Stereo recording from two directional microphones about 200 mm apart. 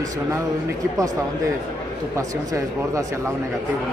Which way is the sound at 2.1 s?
15° right (ahead or behind).